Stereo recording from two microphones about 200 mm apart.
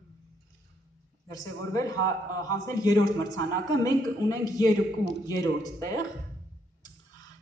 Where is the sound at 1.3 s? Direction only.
15° left (ahead or behind).